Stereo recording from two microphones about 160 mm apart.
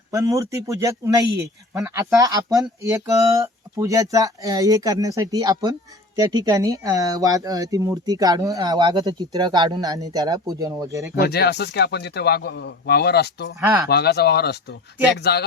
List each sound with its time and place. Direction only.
0.1 s speech: 20° right (ahead or behind)
11.2 s a man's voice: 85° left
13.6 s speech: 10° right (ahead or behind)
13.8 s a man's voice: 90° left